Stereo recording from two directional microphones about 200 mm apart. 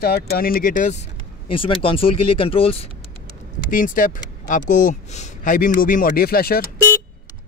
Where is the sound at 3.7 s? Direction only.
40° left (ahead or behind).